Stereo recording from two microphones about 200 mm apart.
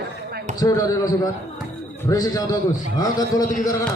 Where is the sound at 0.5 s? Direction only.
15° left (ahead or behind).